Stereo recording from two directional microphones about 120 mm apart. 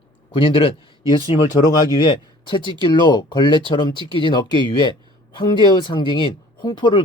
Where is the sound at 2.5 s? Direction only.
40° left (ahead or behind).